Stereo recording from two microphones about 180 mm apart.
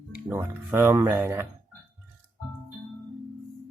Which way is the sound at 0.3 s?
10° right (ahead or behind).